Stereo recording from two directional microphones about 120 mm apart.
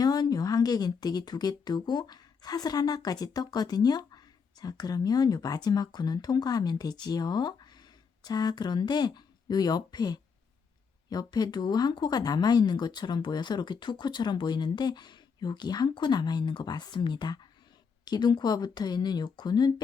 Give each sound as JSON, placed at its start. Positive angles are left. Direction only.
{"t": 0.0, "sound": "a woman's voice", "side_deg": 35}